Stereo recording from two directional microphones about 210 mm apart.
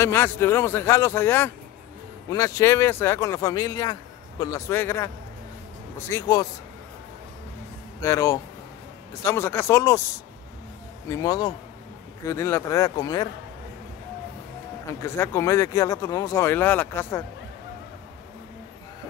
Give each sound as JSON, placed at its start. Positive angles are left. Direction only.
{"t": 0.0, "sound": "speech", "side_deg": 10}
{"t": 8.0, "sound": "speech", "side_deg": 15}
{"t": 11.1, "sound": "speech", "side_deg": 15}
{"t": 15.0, "sound": "speech", "side_deg": 10}